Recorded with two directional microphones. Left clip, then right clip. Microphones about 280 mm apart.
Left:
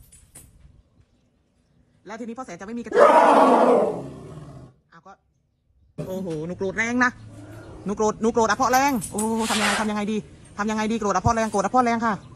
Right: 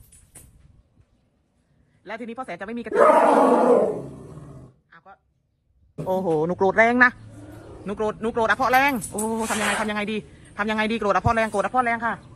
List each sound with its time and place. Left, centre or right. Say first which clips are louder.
0.1 s vehicle: left 1 dB; centre
2.0 s speech: right 2 dB; centre
4.9 s a sound: left 1 dB; centre
5.9 s speech: right 8 dB; centre
11.7 s speech: left 2 dB; centre